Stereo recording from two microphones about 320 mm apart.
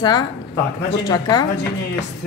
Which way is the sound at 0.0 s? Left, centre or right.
Centre.